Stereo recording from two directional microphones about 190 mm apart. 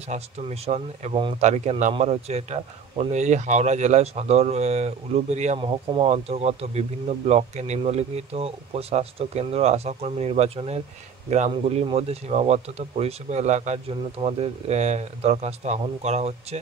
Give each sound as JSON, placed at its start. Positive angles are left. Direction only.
{"t": 0.1, "sound": "speech", "side_deg": -35}